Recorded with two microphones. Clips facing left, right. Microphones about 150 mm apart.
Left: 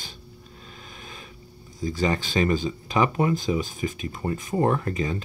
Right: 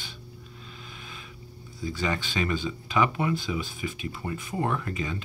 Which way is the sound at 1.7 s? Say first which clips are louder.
Left 5 dB; 40° left (ahead or behind).